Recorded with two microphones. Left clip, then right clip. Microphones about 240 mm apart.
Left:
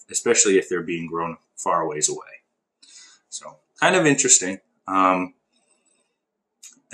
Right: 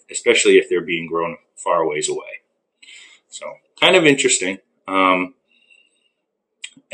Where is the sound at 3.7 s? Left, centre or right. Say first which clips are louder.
Right 5 dB; left.